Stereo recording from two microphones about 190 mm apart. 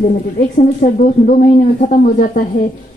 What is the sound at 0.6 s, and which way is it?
A woman's voice, 45° left (ahead or behind).